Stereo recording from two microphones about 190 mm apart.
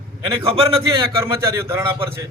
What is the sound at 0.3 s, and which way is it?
Speech, 30° right (ahead or behind).